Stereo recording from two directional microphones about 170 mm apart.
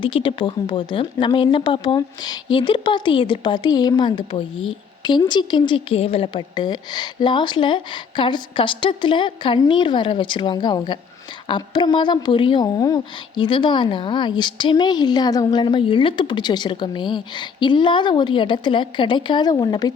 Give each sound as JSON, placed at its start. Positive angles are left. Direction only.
{"t": 0.0, "sound": "a woman's voice", "side_deg": 30}